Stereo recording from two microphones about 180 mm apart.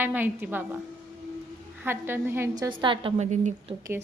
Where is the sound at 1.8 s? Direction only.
10° right (ahead or behind); by 3.7 s 40° right (ahead or behind).